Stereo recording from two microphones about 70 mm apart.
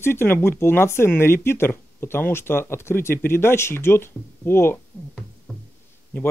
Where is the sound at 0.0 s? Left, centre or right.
Left.